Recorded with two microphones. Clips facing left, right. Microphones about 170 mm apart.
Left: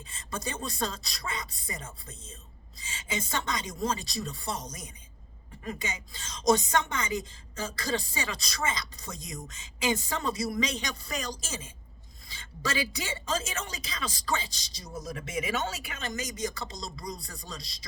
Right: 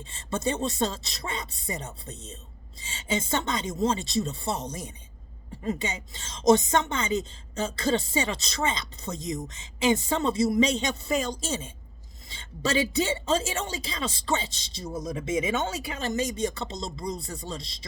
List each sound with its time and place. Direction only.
0.1 s a woman's voice: 25° right (ahead or behind)